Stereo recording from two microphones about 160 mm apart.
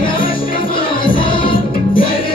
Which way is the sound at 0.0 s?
60° left (ahead or behind).